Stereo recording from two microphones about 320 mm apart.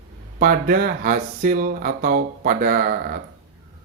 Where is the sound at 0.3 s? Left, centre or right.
Right.